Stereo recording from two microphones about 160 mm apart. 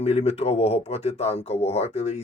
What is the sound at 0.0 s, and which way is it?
Speech, 40° left (ahead or behind).